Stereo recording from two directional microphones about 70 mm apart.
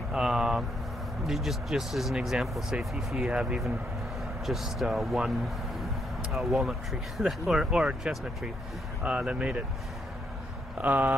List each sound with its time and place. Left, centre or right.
0.1 s speech: centre
3.3 s speech: centre
4.5 s speech: centre
6.3 s speech: centre
10.8 s speech: right